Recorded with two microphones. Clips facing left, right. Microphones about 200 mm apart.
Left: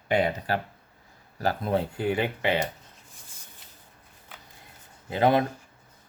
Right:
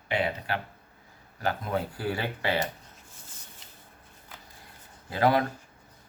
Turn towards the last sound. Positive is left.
turn(degrees=20)  # may be behind; listen again after turning